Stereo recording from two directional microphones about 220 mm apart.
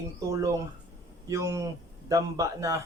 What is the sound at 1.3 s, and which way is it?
A man's voice, 15° right (ahead or behind).